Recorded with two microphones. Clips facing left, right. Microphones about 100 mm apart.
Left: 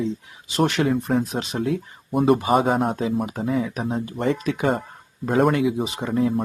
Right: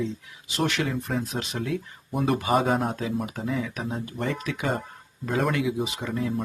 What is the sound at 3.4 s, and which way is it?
Speech, 40° left (ahead or behind).